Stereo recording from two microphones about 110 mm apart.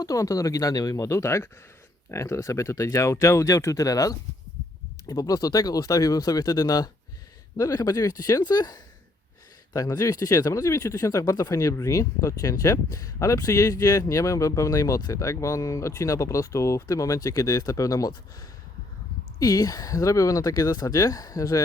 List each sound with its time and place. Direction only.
0.0 s speech: 30° left (ahead or behind)